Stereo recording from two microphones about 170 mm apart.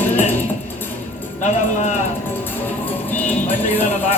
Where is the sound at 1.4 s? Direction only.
45° left (ahead or behind).